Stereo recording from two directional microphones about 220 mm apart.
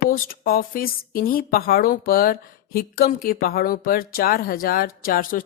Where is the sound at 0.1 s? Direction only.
40° left (ahead or behind).